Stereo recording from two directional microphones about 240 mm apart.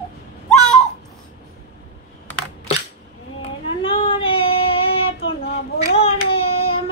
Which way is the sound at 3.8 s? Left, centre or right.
Left.